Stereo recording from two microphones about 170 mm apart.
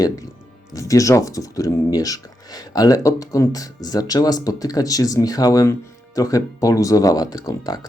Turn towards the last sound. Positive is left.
turn(degrees=20)  # may be behind; listen again after turning